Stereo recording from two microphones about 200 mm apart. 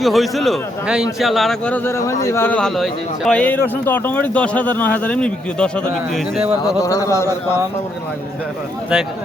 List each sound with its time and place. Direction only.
0.0 s a man's voice: centre (ahead or behind)
5.9 s a man's voice: 5° right (ahead or behind)
6.7 s a man's voice: 15° left (ahead or behind)